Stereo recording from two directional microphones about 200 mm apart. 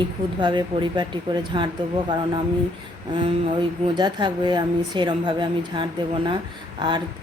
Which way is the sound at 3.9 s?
20° right (ahead or behind).